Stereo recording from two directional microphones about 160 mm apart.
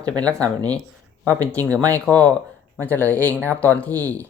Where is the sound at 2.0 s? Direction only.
10° left (ahead or behind).